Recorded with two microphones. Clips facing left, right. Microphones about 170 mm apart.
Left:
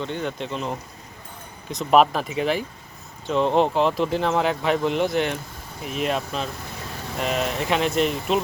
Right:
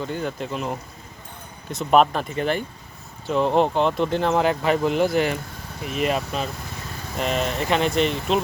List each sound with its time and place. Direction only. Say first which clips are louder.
0.0 s speech: even; 5° right (ahead or behind)